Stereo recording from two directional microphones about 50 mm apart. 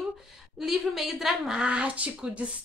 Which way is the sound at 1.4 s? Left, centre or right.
Centre.